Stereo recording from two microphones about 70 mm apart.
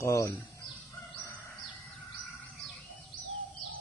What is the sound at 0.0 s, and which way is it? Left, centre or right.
Speech, left.